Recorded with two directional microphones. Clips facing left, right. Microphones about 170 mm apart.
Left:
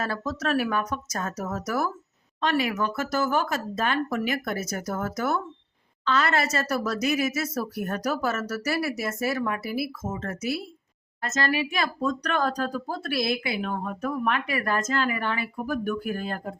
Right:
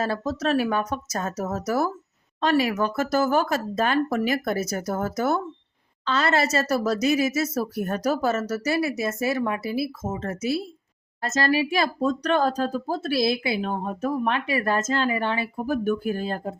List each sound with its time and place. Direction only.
0.0 s speech: 25° right (ahead or behind)